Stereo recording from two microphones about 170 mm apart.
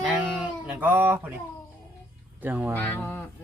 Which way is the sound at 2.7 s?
10° left (ahead or behind).